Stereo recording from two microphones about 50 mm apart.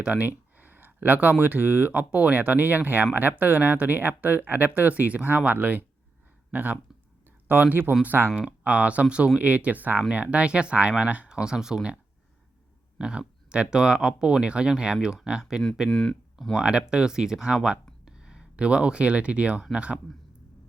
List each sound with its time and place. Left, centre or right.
0.0 s speech: right
11.4 s speech: centre
13.0 s speech: centre
15.9 s speech: centre
16.6 s speech: centre